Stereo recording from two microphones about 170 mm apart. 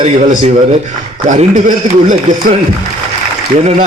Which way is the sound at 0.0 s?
45° right (ahead or behind).